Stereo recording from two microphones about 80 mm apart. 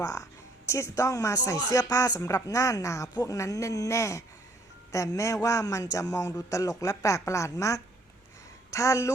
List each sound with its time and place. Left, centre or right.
0.0 s a man's voice: left